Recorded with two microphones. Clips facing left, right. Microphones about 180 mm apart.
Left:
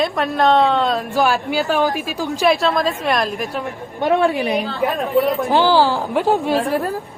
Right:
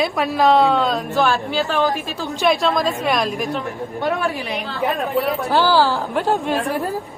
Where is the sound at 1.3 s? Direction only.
15° left (ahead or behind).